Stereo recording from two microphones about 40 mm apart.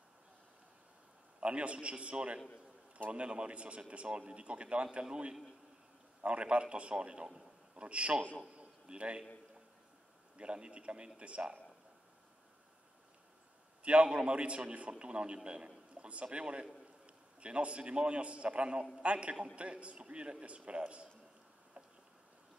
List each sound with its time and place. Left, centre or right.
1.4 s a man's voice: right
6.2 s speech: right
7.3 s a sound: right
10.3 s a man's voice: right
14.0 s a man's voice: right